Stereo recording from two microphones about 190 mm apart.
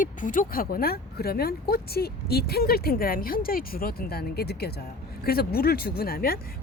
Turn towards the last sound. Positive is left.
turn(degrees=50)  # may be behind; listen again after turning